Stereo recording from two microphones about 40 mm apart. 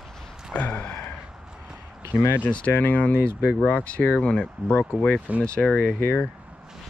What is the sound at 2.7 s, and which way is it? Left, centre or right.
Speech, left.